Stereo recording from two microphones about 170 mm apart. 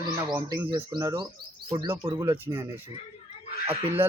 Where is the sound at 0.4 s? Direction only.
25° right (ahead or behind).